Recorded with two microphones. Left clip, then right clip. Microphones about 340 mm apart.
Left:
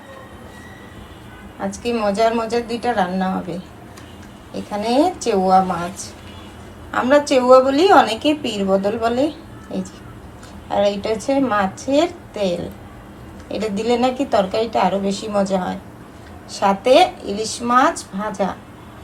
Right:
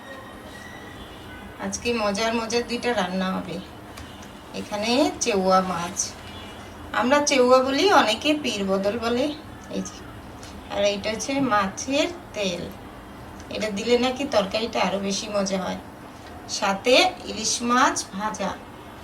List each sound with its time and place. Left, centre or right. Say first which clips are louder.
1.7 s a woman's voice: left 4 dB; centre
4.5 s a woman's voice: left 5 dB; centre